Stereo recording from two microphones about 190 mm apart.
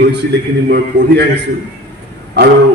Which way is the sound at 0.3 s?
60° right (ahead or behind).